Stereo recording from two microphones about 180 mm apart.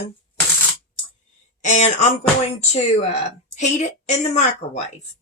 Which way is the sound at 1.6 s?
40° left (ahead or behind).